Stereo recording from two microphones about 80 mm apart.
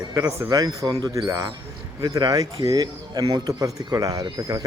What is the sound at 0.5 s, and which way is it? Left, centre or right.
Speech, right.